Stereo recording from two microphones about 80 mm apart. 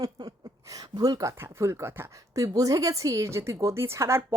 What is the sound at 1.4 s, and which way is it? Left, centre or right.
Speech, right.